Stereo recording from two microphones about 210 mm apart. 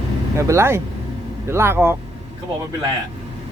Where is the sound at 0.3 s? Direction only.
15° right (ahead or behind).